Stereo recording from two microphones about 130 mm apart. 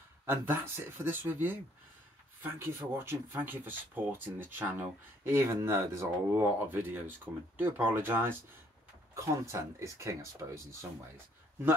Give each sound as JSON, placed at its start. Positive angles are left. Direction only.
{"t": 0.2, "sound": "speech", "side_deg": -15}